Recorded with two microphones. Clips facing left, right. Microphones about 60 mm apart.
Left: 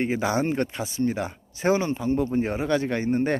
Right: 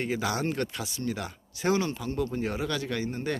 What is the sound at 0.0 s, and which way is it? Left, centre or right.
Speech, left.